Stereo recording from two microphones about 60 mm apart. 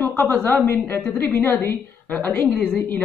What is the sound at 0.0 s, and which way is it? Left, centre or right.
A woman's voice, left.